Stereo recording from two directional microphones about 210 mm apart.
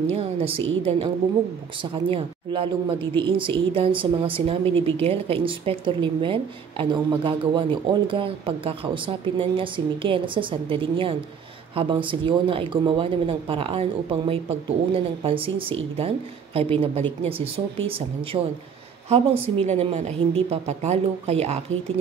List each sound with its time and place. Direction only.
0.1 s a woman's voice: 30° right (ahead or behind)